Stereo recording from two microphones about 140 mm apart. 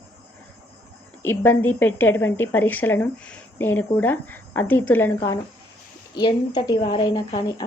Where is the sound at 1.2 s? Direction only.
15° left (ahead or behind).